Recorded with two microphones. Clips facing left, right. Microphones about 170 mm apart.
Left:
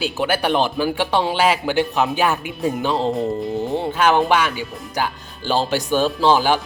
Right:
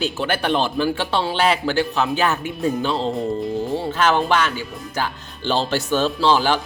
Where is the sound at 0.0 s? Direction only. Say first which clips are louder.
Left 2 dB; 10° left (ahead or behind).